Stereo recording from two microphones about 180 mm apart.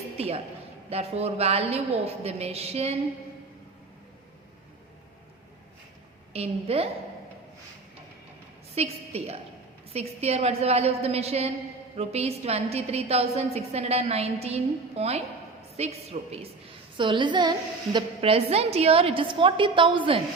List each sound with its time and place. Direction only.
0.2 s a woman's voice: 35° right (ahead or behind)
6.3 s a woman's voice: 35° right (ahead or behind)
8.7 s a woman's voice: 35° right (ahead or behind)